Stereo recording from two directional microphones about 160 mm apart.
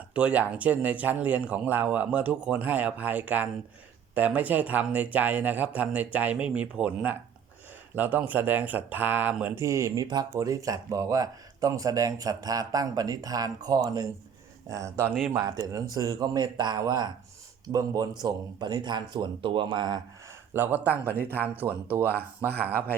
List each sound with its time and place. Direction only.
0.1 s speech: 10° right (ahead or behind); by 20.0 s 25° right (ahead or behind)
20.5 s speech: 10° right (ahead or behind)
22.6 s speech: 10° left (ahead or behind)